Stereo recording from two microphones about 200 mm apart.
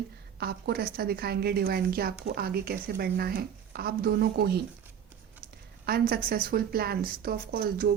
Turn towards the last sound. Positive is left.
turn(degrees=-50)  # may be behind; listen again after turning